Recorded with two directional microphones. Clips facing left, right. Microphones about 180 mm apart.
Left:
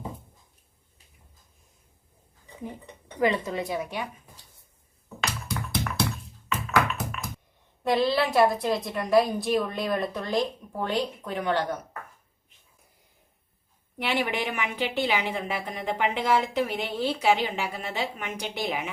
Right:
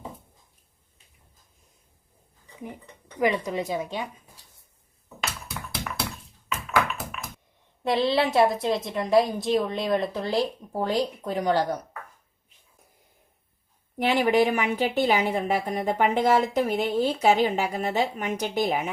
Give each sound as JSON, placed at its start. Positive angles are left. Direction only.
{"t": 3.3, "sound": "a woman's voice", "side_deg": -20}
{"t": 5.2, "sound": "tap", "side_deg": -5}
{"t": 7.9, "sound": "a woman's voice", "side_deg": -25}
{"t": 14.0, "sound": "speech", "side_deg": -40}